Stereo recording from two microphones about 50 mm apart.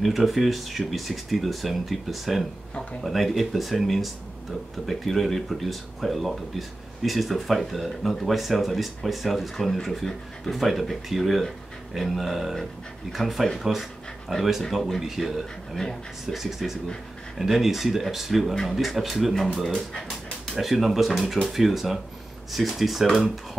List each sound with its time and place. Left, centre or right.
0.0 s speech: centre
2.7 s a sound: left
3.0 s speech: centre
15.8 s speech: centre
16.3 s speech: centre